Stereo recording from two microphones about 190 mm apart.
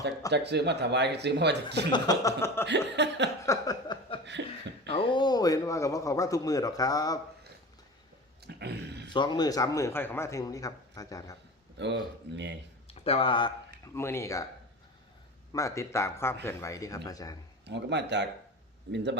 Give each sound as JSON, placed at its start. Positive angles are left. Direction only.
{"t": 0.3, "sound": "speech", "side_deg": -60}
{"t": 1.9, "sound": "a man's voice", "side_deg": 20}
{"t": 2.6, "sound": "speech", "side_deg": -65}
{"t": 3.4, "sound": "a sound", "side_deg": 20}
{"t": 4.4, "sound": "speech", "side_deg": -65}
{"t": 4.9, "sound": "speech", "side_deg": 25}
{"t": 8.4, "sound": "a sound", "side_deg": -60}
{"t": 9.1, "sound": "a man's voice", "side_deg": 25}
{"t": 12.9, "sound": "speech", "side_deg": 30}
{"t": 13.8, "sound": "a man's voice", "side_deg": 15}
{"t": 15.5, "sound": "a man's voice", "side_deg": 15}
{"t": 17.7, "sound": "speech", "side_deg": -65}